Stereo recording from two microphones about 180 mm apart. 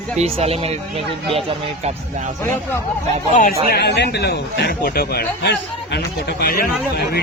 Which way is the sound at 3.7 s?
65° left (ahead or behind).